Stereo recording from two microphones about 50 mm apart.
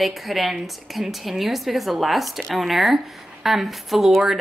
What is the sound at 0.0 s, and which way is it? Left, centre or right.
A woman's voice, centre.